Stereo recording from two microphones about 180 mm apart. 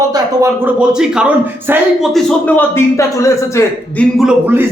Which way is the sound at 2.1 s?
10° left (ahead or behind).